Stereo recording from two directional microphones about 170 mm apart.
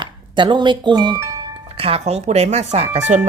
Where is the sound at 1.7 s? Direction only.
35° right (ahead or behind).